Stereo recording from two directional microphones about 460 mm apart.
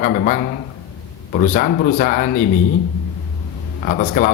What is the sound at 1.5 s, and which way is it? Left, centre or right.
Speech, centre.